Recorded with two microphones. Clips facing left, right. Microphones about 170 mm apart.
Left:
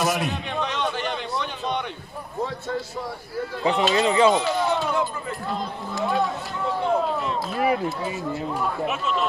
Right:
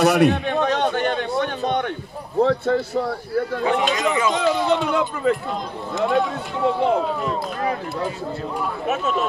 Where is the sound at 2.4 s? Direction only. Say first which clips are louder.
Right 10 dB; 70° right (ahead or behind).